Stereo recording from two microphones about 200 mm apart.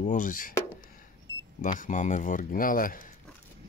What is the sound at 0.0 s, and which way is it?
Speech, 40° left (ahead or behind).